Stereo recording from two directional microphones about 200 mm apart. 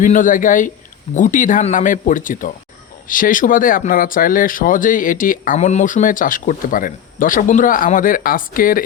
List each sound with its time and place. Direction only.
0.0 s speech: 40° left (ahead or behind)